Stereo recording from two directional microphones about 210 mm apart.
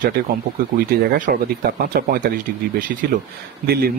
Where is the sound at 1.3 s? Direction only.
40° right (ahead or behind).